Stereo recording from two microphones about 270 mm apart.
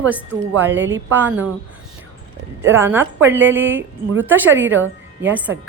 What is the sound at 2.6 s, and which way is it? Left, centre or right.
A woman's voice, centre.